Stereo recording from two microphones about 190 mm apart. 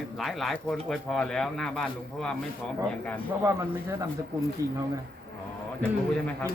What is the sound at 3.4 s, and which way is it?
Speech, 15° right (ahead or behind).